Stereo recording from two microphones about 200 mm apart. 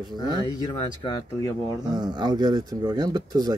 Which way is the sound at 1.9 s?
20° right (ahead or behind).